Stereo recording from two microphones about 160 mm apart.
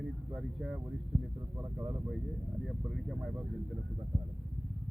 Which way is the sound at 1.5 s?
20° right (ahead or behind).